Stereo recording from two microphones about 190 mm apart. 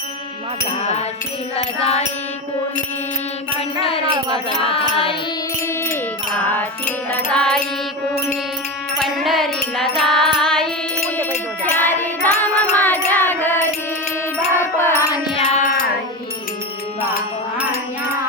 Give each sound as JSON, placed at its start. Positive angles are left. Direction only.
{"t": 1.5, "sound": "music", "side_deg": 30}
{"t": 4.1, "sound": "a sound", "side_deg": -25}
{"t": 4.6, "sound": "music", "side_deg": 30}
{"t": 6.5, "sound": "music", "side_deg": 10}
{"t": 9.0, "sound": "music", "side_deg": 0}
{"t": 11.7, "sound": "music", "side_deg": 10}
{"t": 14.6, "sound": "music", "side_deg": 15}
{"t": 15.4, "sound": "music", "side_deg": 30}